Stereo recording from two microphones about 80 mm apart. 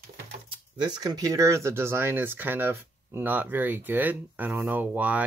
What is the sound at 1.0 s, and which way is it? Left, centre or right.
Speech, right.